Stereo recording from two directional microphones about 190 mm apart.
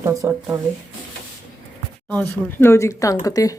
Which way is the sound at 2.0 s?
10° left (ahead or behind).